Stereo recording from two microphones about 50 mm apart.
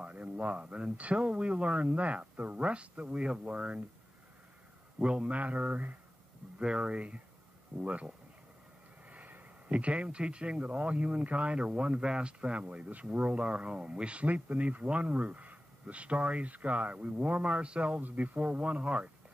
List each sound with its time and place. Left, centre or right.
0.0 s speech: right
4.9 s speech: right
6.6 s speech: centre
9.1 s speech: right